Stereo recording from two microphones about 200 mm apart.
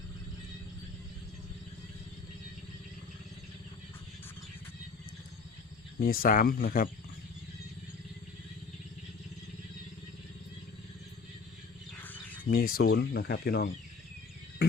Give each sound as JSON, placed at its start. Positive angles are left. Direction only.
{"t": 6.0, "sound": "speech", "side_deg": 45}
{"t": 11.9, "sound": "bird", "side_deg": 10}
{"t": 12.5, "sound": "speech", "side_deg": 45}